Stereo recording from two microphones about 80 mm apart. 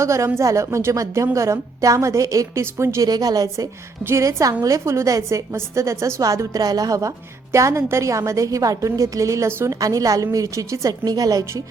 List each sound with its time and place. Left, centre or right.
0.0 s speech: right
3.1 s a woman's voice: right
7.5 s speech: right
9.8 s a woman's voice: right